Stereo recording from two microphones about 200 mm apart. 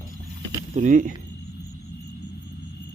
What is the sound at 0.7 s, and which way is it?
Speech, 40° right (ahead or behind).